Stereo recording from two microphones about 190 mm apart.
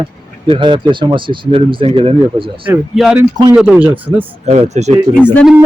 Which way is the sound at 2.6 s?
5° right (ahead or behind).